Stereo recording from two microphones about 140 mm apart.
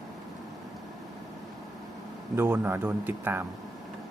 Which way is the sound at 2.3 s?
15° right (ahead or behind).